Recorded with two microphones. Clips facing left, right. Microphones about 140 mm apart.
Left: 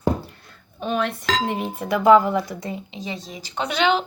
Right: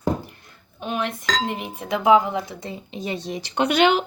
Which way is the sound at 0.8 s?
15° right (ahead or behind).